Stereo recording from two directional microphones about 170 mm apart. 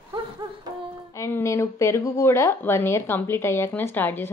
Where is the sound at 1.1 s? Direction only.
15° left (ahead or behind).